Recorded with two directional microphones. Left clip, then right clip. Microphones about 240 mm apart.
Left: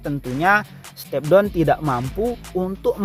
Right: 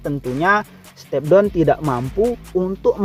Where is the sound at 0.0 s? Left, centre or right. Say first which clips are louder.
Right 1 dB; right.